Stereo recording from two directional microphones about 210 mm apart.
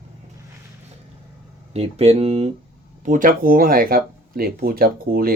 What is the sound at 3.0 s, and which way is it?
Speech, 40° right (ahead or behind).